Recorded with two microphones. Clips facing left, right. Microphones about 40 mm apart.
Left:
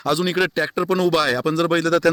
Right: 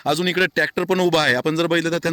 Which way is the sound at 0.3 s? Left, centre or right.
Right.